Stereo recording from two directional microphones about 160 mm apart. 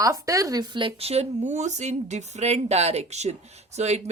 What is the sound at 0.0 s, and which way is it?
Speech, 20° right (ahead or behind).